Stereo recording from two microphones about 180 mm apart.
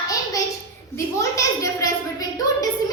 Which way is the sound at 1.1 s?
15° left (ahead or behind).